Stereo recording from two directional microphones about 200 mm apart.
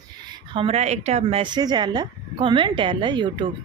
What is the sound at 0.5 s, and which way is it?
Speech, 30° right (ahead or behind).